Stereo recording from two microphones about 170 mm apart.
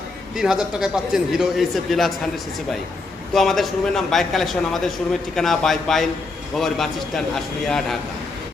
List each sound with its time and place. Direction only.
0.3 s a man's voice: 5° right (ahead or behind)
3.3 s a man's voice: centre (ahead or behind)